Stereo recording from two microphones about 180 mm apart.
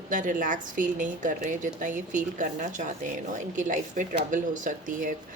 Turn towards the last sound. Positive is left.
turn(degrees=-45)  # may be behind; listen again after turning